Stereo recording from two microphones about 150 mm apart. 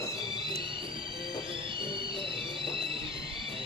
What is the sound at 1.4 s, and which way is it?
Music, 35° right (ahead or behind).